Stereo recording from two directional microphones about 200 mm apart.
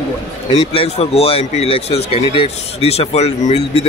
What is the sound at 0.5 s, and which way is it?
Speech, 30° left (ahead or behind).